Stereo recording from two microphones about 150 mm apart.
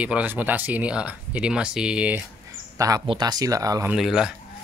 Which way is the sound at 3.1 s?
30° right (ahead or behind).